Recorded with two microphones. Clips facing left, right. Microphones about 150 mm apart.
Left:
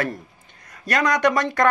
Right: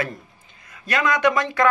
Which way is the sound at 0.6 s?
40° left (ahead or behind).